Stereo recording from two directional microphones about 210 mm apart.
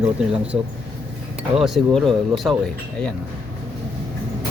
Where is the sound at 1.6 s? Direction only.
Centre (ahead or behind).